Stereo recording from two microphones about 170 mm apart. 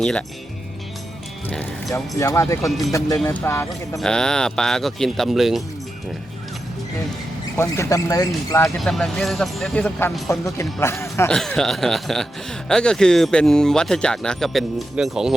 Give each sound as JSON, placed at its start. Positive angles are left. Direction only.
{"t": 0.0, "sound": "speech", "side_deg": 5}
{"t": 1.9, "sound": "speech", "side_deg": 15}
{"t": 2.6, "sound": "speech", "side_deg": 0}
{"t": 3.2, "sound": "speech", "side_deg": 15}
{"t": 4.0, "sound": "speech", "side_deg": 5}
{"t": 7.5, "sound": "speech", "side_deg": 15}
{"t": 8.8, "sound": "speech", "side_deg": 0}
{"t": 10.2, "sound": "speech", "side_deg": 15}
{"t": 11.3, "sound": "speech", "side_deg": 5}